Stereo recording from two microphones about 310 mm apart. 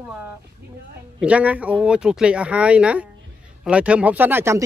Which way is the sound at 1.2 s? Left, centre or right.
Centre.